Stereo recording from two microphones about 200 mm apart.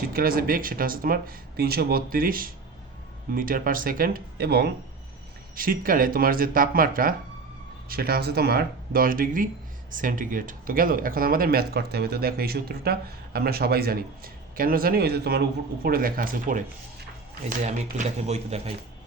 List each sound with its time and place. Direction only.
0.1 s speech: 45° right (ahead or behind)
17.8 s a man's voice: 35° right (ahead or behind)